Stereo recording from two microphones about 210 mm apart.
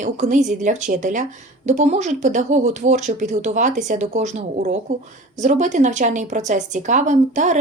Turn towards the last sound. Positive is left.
turn(degrees=-35)  # may be behind; listen again after turning